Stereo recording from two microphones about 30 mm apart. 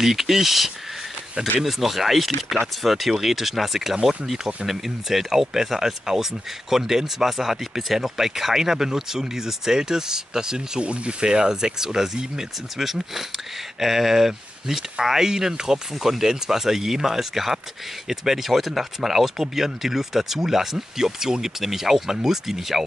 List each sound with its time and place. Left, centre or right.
0.0 s speech: centre
10.8 s speech: right; by 22.8 s centre